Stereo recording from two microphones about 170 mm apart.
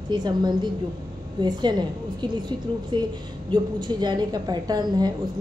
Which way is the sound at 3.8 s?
25° right (ahead or behind).